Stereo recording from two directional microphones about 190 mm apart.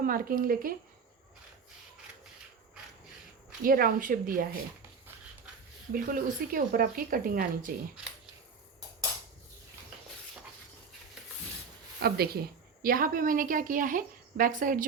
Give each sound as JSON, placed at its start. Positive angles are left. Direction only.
{"t": 0.0, "sound": "a woman's voice", "side_deg": -50}
{"t": 3.6, "sound": "a woman's voice", "side_deg": -50}
{"t": 5.9, "sound": "a woman's voice", "side_deg": -45}
{"t": 12.0, "sound": "a woman's voice", "side_deg": -55}